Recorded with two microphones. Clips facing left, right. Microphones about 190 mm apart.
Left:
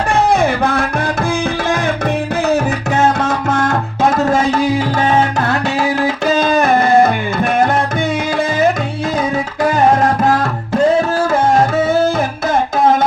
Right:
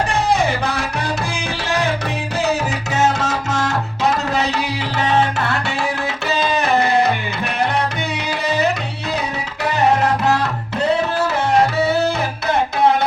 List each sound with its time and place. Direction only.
0.1 s music: 55° left (ahead or behind)
2.5 s music: 55° left (ahead or behind)
9.6 s music: 45° left (ahead or behind)